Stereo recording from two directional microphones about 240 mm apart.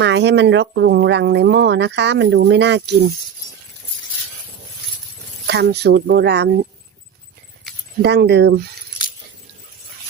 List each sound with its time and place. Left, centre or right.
0.0 s speech: right
5.5 s speech: right
8.0 s speech: right